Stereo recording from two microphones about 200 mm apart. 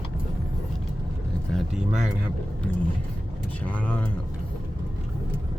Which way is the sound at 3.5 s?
5° left (ahead or behind).